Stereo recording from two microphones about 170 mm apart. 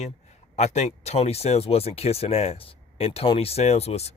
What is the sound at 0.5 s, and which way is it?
Speech, 40° left (ahead or behind).